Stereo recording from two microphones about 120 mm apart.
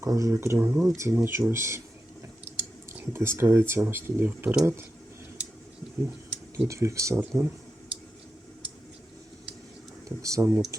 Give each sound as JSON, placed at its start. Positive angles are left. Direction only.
{"t": 0.0, "sound": "speech", "side_deg": -25}
{"t": 6.7, "sound": "speech", "side_deg": -25}
{"t": 10.2, "sound": "speech", "side_deg": -25}